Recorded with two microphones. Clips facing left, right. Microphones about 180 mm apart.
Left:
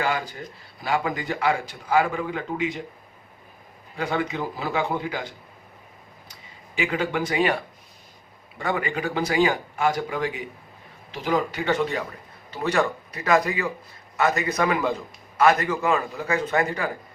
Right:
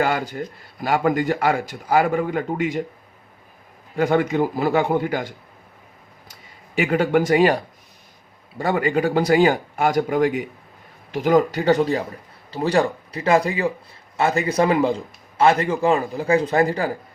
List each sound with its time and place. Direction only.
0.0 s a man's voice: 45° right (ahead or behind)
3.9 s a man's voice: 45° right (ahead or behind)
6.7 s a man's voice: 50° right (ahead or behind); by 16.9 s 30° right (ahead or behind)